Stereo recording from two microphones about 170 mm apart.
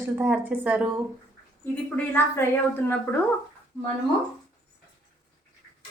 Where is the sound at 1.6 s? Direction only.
10° left (ahead or behind).